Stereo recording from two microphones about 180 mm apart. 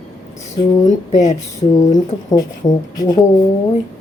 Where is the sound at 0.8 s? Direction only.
40° left (ahead or behind).